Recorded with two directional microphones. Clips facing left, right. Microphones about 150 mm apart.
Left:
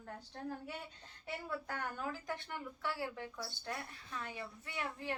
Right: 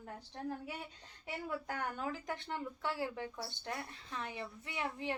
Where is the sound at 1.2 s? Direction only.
15° right (ahead or behind).